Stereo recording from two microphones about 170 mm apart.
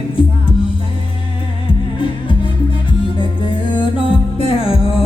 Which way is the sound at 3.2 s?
30° left (ahead or behind).